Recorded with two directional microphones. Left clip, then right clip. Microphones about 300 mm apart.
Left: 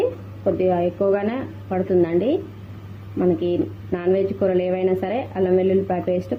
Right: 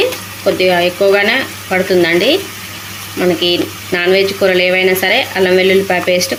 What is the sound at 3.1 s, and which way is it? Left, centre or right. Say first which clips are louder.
Speech: right 8 dB; centre.